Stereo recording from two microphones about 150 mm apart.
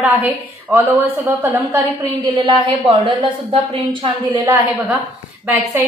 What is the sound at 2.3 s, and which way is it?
A woman's voice, 35° right (ahead or behind).